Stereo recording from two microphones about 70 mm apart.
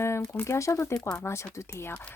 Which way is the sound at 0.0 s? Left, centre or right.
Left.